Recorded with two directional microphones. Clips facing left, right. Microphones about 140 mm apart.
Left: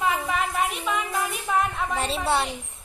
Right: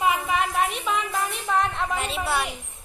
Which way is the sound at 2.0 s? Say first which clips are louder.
Left 2 dB; 35° left (ahead or behind).